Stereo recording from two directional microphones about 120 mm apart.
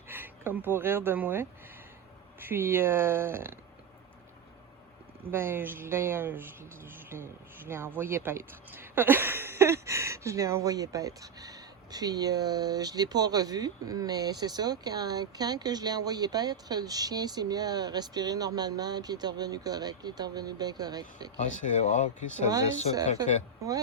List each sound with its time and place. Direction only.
0.1 s speech: 15° right (ahead or behind)
5.3 s speech: 20° right (ahead or behind); by 21.2 s 35° right (ahead or behind)
21.3 s speech: 65° left (ahead or behind)